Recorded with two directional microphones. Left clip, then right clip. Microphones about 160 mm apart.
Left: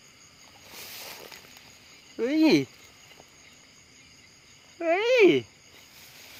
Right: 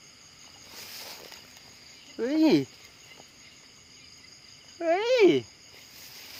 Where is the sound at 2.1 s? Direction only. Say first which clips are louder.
Left 1 dB; 5° left (ahead or behind).